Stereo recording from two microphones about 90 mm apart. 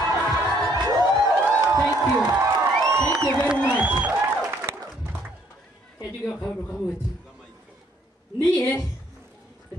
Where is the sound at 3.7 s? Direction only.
15° right (ahead or behind).